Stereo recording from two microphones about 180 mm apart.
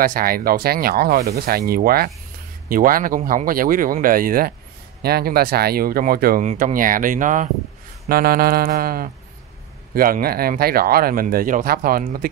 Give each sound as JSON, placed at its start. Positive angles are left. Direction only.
{"t": 0.0, "sound": "speech", "side_deg": -50}
{"t": 6.4, "sound": "speech", "side_deg": -45}